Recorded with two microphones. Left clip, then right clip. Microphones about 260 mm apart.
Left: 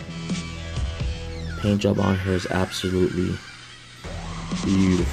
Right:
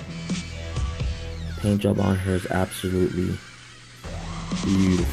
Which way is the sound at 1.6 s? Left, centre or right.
Centre.